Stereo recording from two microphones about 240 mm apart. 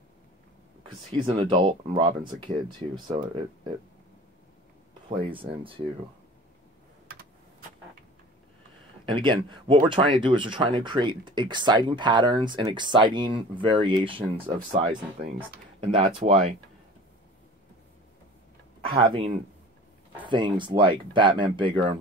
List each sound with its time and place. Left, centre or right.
1.1 s speech: centre
5.2 s speech: right
9.0 s speech: right
18.9 s speech: right